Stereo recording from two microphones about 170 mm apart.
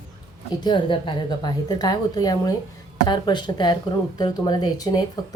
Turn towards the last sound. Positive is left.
turn(degrees=25)  # may be behind; listen again after turning